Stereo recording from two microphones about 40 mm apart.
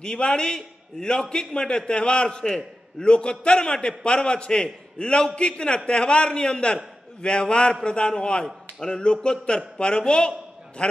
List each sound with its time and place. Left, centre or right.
0.0 s a man's voice: left